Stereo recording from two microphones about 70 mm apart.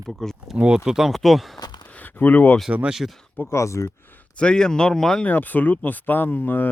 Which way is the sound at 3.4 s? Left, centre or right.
Left.